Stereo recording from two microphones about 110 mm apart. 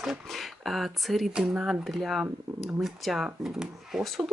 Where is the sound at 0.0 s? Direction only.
Centre (ahead or behind).